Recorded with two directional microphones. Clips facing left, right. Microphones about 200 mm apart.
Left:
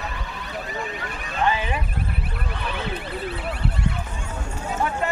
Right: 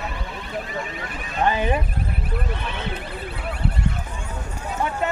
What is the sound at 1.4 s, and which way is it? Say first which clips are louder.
Speech: right 3 dB; 50° right (ahead or behind).